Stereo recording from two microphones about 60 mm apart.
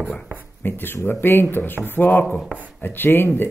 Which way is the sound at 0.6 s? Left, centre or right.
Left.